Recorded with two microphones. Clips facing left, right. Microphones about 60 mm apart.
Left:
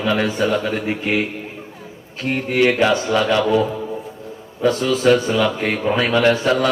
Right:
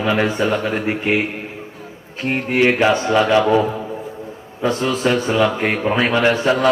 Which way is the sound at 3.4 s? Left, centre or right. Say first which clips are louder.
Right 1 dB; right.